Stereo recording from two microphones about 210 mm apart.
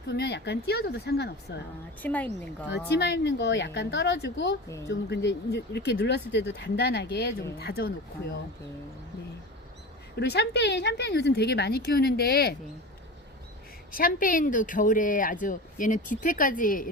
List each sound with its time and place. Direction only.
0.1 s a woman's voice: 55° left (ahead or behind)
2.0 s speech: 5° left (ahead or behind)
3.0 s a woman's voice: 55° left (ahead or behind)
10.2 s a woman's voice: 50° left (ahead or behind)
13.9 s speech: 40° left (ahead or behind)